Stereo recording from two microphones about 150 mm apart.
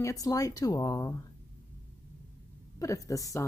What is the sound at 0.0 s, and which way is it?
A woman's voice, 25° left (ahead or behind).